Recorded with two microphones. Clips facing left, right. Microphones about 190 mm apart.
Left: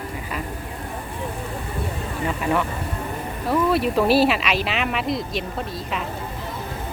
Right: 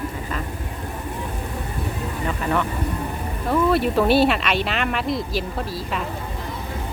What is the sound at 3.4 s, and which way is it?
Speech, centre (ahead or behind).